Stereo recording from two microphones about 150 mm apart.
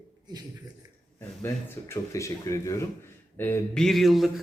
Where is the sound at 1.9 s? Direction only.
20° left (ahead or behind).